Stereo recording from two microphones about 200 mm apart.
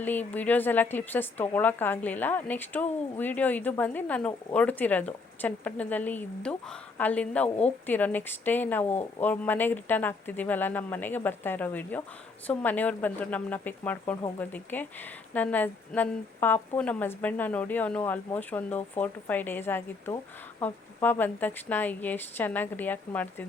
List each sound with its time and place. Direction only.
0.0 s speech: 10° left (ahead or behind)